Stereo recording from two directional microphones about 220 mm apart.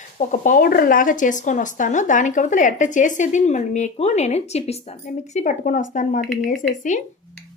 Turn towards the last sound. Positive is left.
turn(degrees=35)  # may be behind; listen again after turning